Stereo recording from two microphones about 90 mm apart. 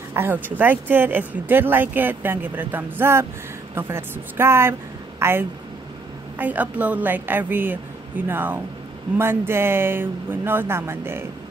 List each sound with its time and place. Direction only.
0.1 s speech: 25° right (ahead or behind)